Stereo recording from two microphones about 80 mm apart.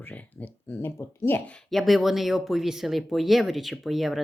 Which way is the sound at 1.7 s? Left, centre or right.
Centre.